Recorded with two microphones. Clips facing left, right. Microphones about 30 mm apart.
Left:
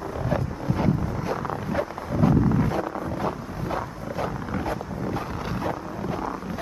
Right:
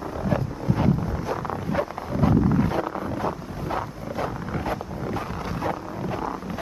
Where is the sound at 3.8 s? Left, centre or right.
Centre.